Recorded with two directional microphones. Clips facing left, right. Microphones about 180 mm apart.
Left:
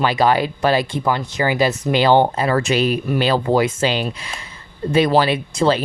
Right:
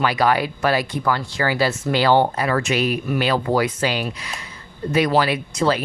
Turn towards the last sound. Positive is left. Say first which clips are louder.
# left 3 dB
turn(degrees=25)  # may be behind; listen again after turning